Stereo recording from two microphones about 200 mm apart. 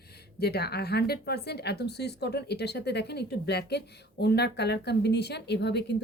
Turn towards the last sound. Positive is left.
turn(degrees=60)  # may be behind; listen again after turning